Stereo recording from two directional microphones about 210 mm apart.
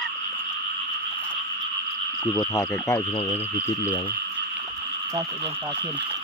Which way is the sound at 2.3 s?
15° left (ahead or behind).